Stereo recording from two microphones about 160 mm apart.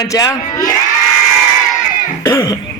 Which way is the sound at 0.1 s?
20° left (ahead or behind).